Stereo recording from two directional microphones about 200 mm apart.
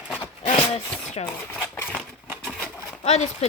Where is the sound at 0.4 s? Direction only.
30° left (ahead or behind).